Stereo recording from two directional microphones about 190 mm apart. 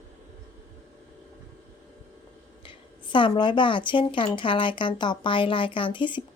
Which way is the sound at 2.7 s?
25° left (ahead or behind).